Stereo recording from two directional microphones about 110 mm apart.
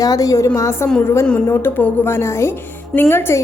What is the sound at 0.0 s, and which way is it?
A woman's voice, 30° left (ahead or behind).